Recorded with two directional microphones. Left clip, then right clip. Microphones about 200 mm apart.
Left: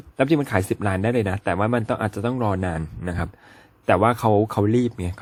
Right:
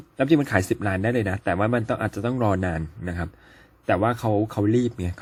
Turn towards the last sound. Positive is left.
turn(degrees=10)  # may be behind; listen again after turning